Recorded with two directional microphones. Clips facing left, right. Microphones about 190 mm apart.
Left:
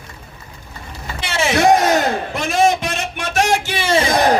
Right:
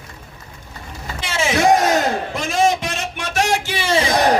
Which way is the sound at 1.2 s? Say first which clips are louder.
Left 2 dB; 65° left (ahead or behind).